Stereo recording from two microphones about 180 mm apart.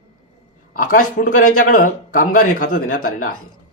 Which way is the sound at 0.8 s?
50° left (ahead or behind).